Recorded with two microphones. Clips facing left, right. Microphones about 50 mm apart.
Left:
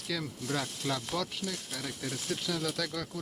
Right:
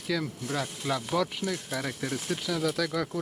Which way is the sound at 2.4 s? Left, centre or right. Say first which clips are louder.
Right 6 dB; centre.